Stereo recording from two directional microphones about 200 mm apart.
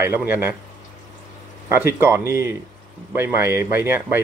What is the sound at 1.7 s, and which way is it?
Speech, 10° right (ahead or behind).